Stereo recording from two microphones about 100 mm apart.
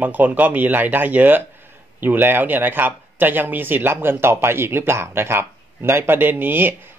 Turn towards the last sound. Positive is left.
turn(degrees=-20)  # may be behind; listen again after turning